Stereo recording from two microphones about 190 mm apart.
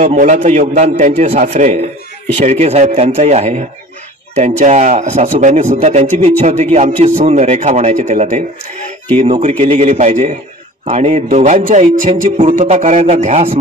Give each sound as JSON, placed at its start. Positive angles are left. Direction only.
{"t": 0.0, "sound": "a man's voice", "side_deg": -35}